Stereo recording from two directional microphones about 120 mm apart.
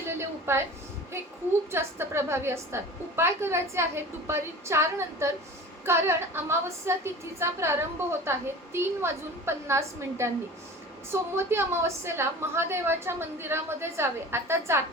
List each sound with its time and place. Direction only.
0.2 s a woman's voice: 20° right (ahead or behind)
1.7 s a woman's voice: 20° right (ahead or behind)